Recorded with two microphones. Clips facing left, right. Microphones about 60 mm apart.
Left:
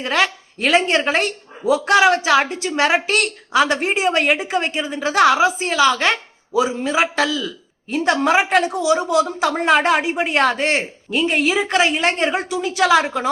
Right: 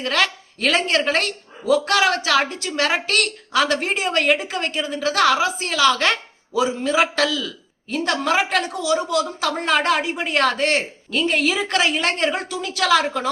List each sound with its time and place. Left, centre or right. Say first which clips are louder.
0.0 s speech: left 2 dB; centre